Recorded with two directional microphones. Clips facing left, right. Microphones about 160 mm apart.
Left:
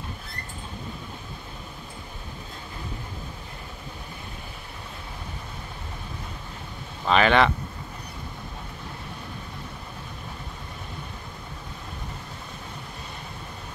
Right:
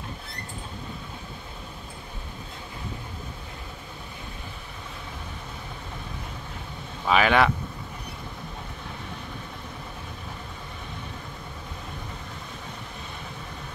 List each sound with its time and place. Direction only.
7.1 s speech: 5° right (ahead or behind)